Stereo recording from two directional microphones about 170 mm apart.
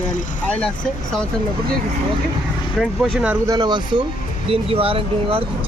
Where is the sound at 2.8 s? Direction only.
Centre (ahead or behind).